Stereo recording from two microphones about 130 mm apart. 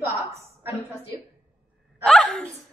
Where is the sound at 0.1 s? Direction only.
25° right (ahead or behind).